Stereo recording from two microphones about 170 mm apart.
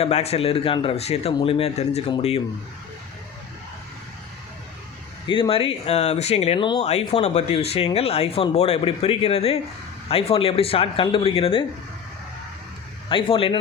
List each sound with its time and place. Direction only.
0.0 s speech: 40° left (ahead or behind)
5.3 s speech: 30° left (ahead or behind)
6.8 s speech: 40° left (ahead or behind)
13.1 s speech: 30° left (ahead or behind)